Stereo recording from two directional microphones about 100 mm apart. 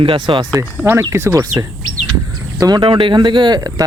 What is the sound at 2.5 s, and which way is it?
Speech, 40° right (ahead or behind).